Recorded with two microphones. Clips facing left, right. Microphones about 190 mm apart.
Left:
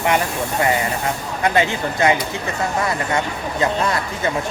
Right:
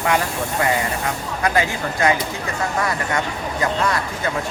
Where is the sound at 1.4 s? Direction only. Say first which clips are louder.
Left 2 dB; 25° left (ahead or behind).